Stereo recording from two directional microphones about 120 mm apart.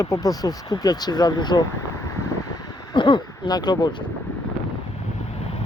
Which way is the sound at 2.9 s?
45° left (ahead or behind).